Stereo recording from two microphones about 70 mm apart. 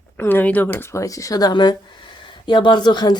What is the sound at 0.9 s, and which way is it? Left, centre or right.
Speech, left.